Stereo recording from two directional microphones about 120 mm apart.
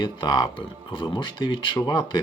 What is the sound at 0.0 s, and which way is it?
Speech, 40° left (ahead or behind).